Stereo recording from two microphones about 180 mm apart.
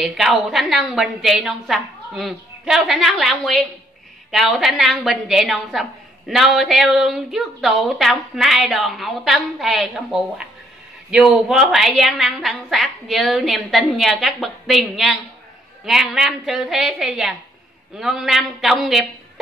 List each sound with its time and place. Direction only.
0.0 s a woman's voice: centre (ahead or behind)